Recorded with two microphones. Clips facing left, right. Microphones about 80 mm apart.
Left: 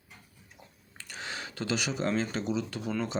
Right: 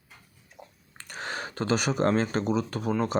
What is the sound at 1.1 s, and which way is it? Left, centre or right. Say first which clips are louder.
Speech: right 5 dB; right.